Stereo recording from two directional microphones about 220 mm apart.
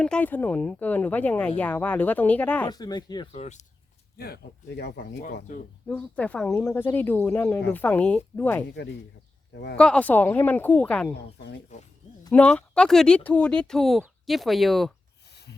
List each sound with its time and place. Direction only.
0.0 s speech: 5° left (ahead or behind)
2.6 s speech: 20° left (ahead or behind)
4.2 s speech: 45° left (ahead or behind)
5.9 s speech: 5° left (ahead or behind)
9.7 s speech: 5° left (ahead or behind)
11.7 s speech: 30° left (ahead or behind)
12.3 s speech: 5° left (ahead or behind)